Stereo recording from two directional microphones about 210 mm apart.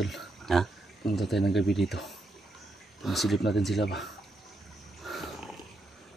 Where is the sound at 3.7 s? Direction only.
55° left (ahead or behind).